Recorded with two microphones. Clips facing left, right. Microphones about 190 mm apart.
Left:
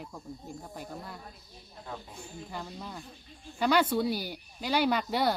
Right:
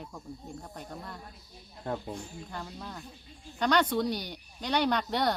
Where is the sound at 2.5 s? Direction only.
5° left (ahead or behind).